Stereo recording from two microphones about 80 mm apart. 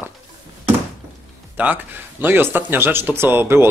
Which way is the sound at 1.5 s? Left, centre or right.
Right.